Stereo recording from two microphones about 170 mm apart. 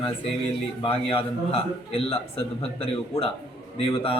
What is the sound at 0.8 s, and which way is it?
A man's voice, 30° left (ahead or behind).